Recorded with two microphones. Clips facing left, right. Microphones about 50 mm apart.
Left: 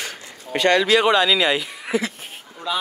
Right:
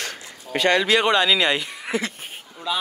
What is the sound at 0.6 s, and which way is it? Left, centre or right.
Speech, centre.